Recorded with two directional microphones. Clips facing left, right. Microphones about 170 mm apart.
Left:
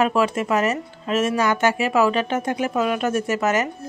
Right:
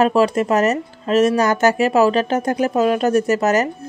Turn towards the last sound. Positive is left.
turn(degrees=-40)  # may be behind; listen again after turning